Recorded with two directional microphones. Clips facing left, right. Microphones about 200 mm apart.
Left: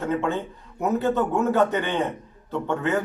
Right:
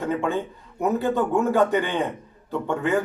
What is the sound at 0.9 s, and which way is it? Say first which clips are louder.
Speech: even; 15° right (ahead or behind).